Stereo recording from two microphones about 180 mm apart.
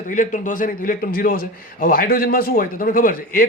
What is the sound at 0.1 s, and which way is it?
A man's voice, 45° left (ahead or behind).